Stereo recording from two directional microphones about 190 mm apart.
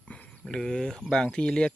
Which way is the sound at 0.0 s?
5° left (ahead or behind).